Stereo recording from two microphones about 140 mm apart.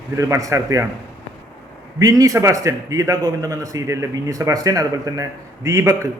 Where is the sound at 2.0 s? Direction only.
25° right (ahead or behind).